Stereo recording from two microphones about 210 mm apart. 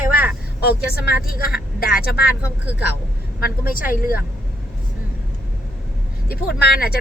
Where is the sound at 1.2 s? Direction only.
45° left (ahead or behind).